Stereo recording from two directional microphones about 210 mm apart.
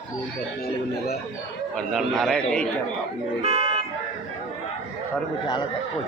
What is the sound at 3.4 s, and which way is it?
Vehicle, 30° right (ahead or behind).